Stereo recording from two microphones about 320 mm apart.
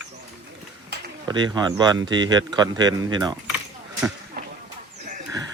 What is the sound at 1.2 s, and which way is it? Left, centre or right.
Speech, centre.